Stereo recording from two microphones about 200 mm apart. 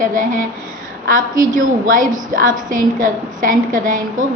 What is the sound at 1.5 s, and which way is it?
A woman's voice, 40° right (ahead or behind).